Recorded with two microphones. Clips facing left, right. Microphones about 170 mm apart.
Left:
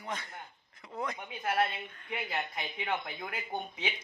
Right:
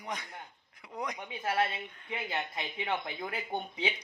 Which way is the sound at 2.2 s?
30° right (ahead or behind).